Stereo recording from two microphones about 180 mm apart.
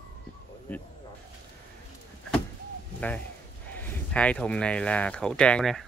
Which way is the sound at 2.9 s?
10° left (ahead or behind).